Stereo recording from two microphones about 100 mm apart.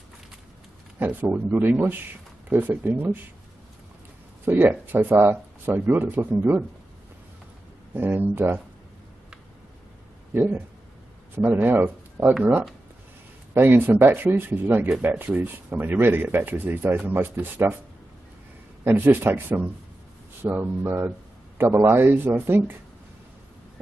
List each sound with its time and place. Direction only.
0.9 s speech: 20° right (ahead or behind)
4.5 s speech: 15° right (ahead or behind)
7.9 s speech: 20° right (ahead or behind)
10.3 s speech: 20° right (ahead or behind)
13.5 s speech: 20° right (ahead or behind)
18.9 s speech: 20° right (ahead or behind)